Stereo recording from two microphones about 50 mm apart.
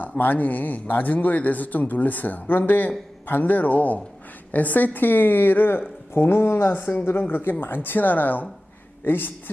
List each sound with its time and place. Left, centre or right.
0.2 s a man's voice: left